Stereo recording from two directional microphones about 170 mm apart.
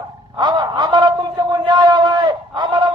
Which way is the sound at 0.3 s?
25° right (ahead or behind).